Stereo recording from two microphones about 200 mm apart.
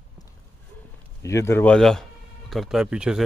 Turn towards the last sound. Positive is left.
turn(degrees=-5)  # may be behind; listen again after turning